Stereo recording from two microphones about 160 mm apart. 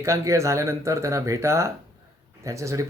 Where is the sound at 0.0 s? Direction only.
20° right (ahead or behind).